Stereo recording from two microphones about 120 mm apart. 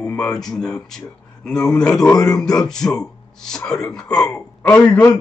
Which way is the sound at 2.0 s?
30° left (ahead or behind).